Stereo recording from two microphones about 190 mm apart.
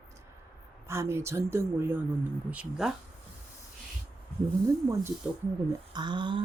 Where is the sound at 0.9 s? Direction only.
15° right (ahead or behind).